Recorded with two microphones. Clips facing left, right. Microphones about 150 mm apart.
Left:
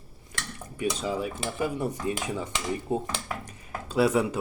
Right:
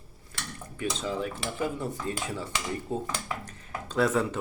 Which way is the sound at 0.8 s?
10° left (ahead or behind).